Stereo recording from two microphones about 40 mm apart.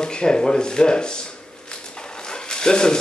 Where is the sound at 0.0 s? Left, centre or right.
Left.